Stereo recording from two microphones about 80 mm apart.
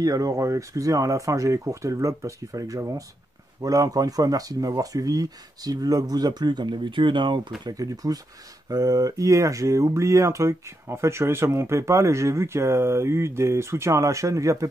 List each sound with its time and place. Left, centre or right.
0.0 s speech: right
7.7 s speech: right